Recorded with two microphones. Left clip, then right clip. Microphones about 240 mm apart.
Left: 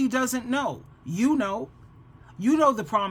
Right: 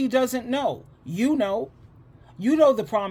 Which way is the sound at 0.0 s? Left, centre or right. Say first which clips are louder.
Right 3 dB; centre.